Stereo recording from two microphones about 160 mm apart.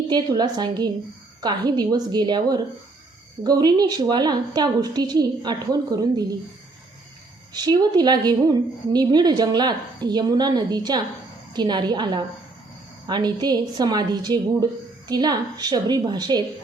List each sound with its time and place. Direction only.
0.1 s a woman's voice: 25° right (ahead or behind)
7.5 s a woman's voice: 25° right (ahead or behind)